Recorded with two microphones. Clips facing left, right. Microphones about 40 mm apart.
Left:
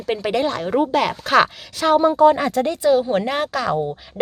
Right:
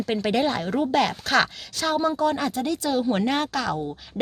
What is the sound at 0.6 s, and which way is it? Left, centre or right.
Speech, centre.